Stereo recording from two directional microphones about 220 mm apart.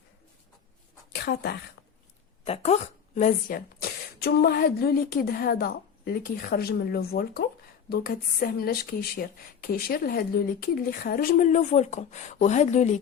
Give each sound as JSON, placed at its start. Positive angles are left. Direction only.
{"t": 1.1, "sound": "speech", "side_deg": 45}
{"t": 2.4, "sound": "speech", "side_deg": 25}